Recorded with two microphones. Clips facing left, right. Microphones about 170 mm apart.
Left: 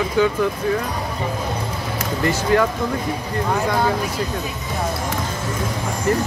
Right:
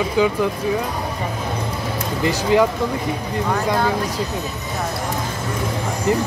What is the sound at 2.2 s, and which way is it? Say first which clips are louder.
Speech: right 1 dB; 15° right (ahead or behind).